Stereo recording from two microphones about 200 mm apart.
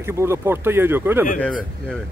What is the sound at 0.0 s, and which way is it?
Speech, 15° right (ahead or behind).